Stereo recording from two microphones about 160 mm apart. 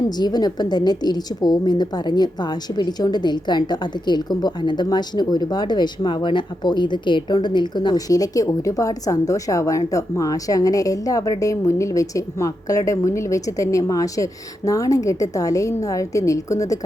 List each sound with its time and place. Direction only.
0.2 s a woman's voice: 25° left (ahead or behind)